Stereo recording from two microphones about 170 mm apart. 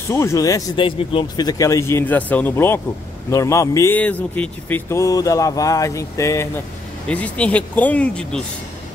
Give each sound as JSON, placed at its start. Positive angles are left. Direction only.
{"t": 0.1, "sound": "speech", "side_deg": 15}